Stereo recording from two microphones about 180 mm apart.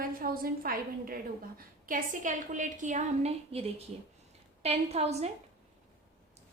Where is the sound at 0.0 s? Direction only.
50° right (ahead or behind); by 5.3 s 35° right (ahead or behind).